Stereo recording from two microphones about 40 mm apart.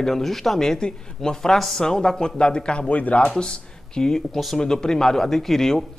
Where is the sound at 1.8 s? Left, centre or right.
Centre.